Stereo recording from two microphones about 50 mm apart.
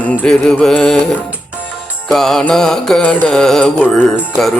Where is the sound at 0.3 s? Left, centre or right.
Centre.